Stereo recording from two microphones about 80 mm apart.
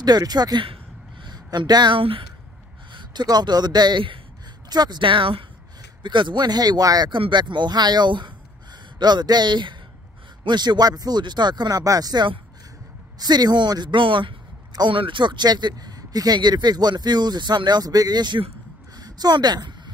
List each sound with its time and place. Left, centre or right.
0.0 s a man's voice: right
4.6 s speech: right
6.0 s speech: right
7.1 s speech: right
9.0 s speech: right
11.8 s speech: right
14.7 s speech: right
18.9 s a sound: right